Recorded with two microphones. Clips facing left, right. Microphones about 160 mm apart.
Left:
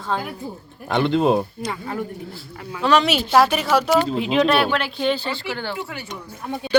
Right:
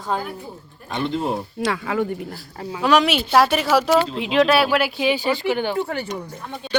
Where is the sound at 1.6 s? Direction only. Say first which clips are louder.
Right 5 dB; 90° right.